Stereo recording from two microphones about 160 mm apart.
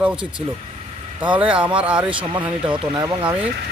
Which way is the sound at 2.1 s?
30° right (ahead or behind).